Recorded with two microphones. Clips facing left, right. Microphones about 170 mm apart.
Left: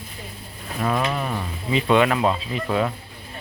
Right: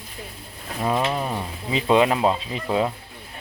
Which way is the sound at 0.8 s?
25° right (ahead or behind).